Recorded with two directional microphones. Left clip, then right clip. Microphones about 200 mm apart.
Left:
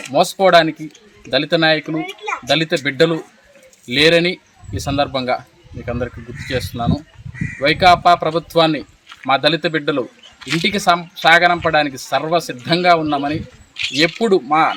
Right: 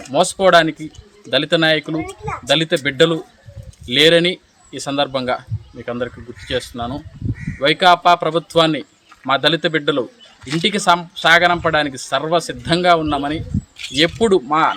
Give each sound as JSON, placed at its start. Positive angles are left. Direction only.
{"t": 0.3, "sound": "speech", "side_deg": 0}
{"t": 2.0, "sound": "speech", "side_deg": -30}
{"t": 2.5, "sound": "speech", "side_deg": 0}
{"t": 13.7, "sound": "a sound", "side_deg": -50}
{"t": 14.2, "sound": "speech", "side_deg": 0}